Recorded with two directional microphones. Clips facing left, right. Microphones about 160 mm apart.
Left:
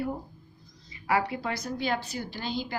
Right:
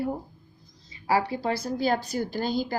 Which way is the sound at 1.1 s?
30° right (ahead or behind).